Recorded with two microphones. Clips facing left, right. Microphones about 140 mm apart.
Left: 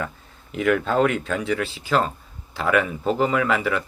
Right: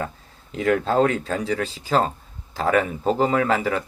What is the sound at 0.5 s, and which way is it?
Speech, 35° right (ahead or behind).